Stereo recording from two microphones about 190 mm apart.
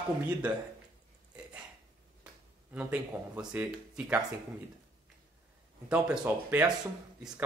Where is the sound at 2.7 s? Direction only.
5° right (ahead or behind).